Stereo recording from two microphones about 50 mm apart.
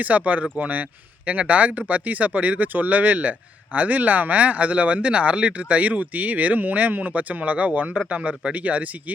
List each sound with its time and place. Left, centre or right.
0.0 s speech: right